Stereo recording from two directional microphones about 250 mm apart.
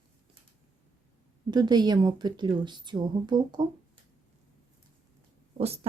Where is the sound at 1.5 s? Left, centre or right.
Centre.